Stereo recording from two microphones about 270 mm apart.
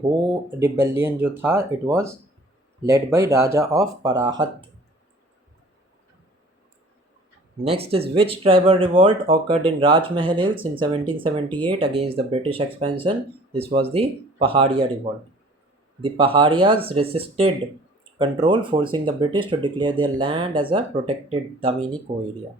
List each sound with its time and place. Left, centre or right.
0.6 s speech: centre
7.7 s speech: right
11.4 s speech: centre
11.7 s speech: centre
16.0 s speech: centre